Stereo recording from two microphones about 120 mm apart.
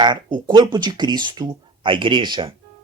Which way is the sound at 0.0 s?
40° right (ahead or behind).